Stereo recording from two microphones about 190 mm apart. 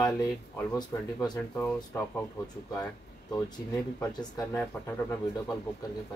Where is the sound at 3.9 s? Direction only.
15° left (ahead or behind).